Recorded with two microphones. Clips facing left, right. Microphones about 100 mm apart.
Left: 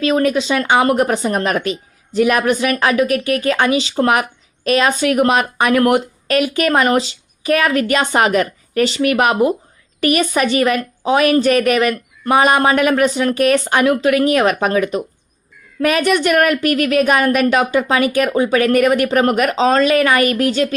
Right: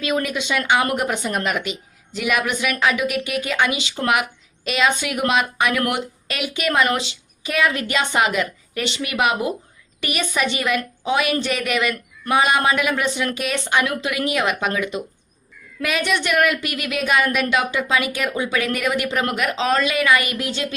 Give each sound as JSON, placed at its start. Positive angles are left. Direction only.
{"t": 0.0, "sound": "a woman's voice", "side_deg": 35}
{"t": 19.5, "sound": "a woman's voice", "side_deg": 35}